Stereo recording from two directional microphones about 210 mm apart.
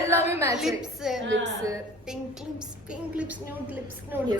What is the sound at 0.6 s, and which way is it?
Speech, centre (ahead or behind).